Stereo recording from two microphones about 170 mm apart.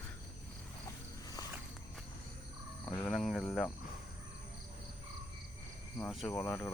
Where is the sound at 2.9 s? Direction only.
5° left (ahead or behind).